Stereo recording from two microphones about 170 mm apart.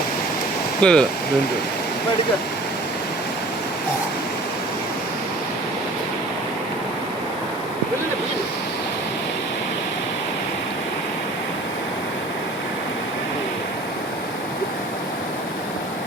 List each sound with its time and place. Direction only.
0.8 s speech: 5° left (ahead or behind)